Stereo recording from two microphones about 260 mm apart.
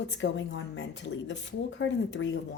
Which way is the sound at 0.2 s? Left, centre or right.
Left.